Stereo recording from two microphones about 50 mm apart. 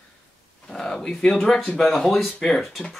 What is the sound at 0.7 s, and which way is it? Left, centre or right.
Speech, centre.